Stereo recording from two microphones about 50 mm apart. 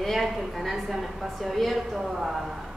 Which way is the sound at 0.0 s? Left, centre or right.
Centre.